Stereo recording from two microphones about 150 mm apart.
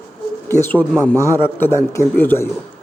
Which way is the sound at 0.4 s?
15° left (ahead or behind).